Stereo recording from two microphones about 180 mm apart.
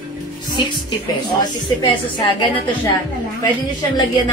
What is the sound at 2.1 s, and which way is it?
Speech, 25° left (ahead or behind).